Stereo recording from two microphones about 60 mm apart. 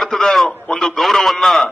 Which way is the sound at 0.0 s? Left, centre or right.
Centre.